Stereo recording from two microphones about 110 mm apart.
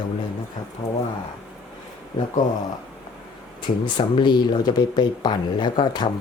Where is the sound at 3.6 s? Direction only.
45° left (ahead or behind).